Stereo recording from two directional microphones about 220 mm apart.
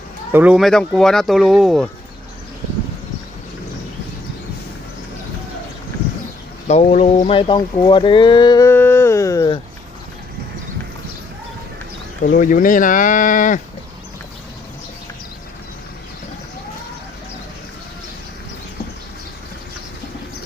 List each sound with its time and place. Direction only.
0.3 s speech: 5° right (ahead or behind)
6.7 s speech: 30° left (ahead or behind); by 9.6 s 15° left (ahead or behind)
12.2 s speech: 40° left (ahead or behind)